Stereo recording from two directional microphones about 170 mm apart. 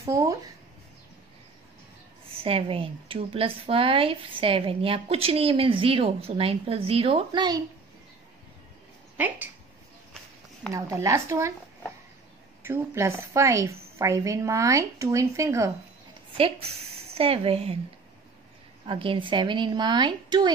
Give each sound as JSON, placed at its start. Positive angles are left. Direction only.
{"t": 0.0, "sound": "speech", "side_deg": -20}
{"t": 2.3, "sound": "a woman's voice", "side_deg": -35}
{"t": 9.1, "sound": "a woman's voice", "side_deg": -10}
{"t": 10.7, "sound": "a woman's voice", "side_deg": -20}
{"t": 12.6, "sound": "a woman's voice", "side_deg": -15}
{"t": 16.3, "sound": "a woman's voice", "side_deg": -35}
{"t": 18.9, "sound": "speech", "side_deg": -30}